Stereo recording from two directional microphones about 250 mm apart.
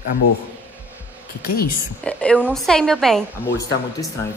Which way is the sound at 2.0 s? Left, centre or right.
Centre.